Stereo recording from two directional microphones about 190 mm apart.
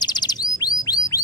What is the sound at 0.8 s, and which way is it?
Bird, 20° left (ahead or behind).